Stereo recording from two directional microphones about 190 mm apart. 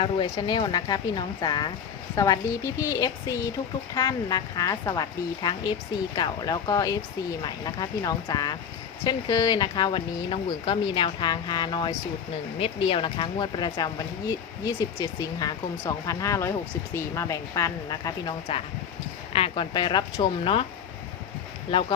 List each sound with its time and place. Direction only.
0.0 s a woman's voice: 25° left (ahead or behind)
21.7 s speech: 25° left (ahead or behind)